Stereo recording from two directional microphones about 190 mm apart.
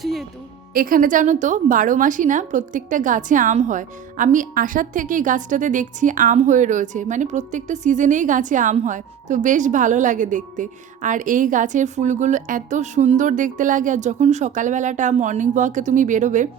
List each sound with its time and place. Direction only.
0.0 s music: centre (ahead or behind)
0.7 s a woman's voice: 50° right (ahead or behind)